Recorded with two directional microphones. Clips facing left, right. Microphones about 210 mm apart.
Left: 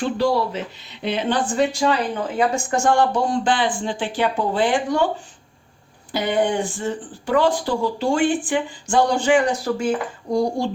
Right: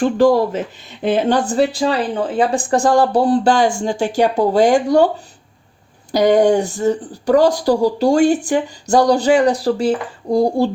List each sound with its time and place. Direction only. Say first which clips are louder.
0.0 s speech: right 7 dB; 50° right (ahead or behind)